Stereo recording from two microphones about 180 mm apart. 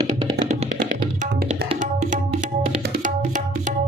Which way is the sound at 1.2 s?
45° right (ahead or behind).